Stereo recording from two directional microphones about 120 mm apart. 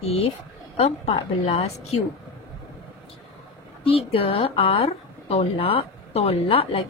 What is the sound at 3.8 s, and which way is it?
A woman's voice, 50° left (ahead or behind).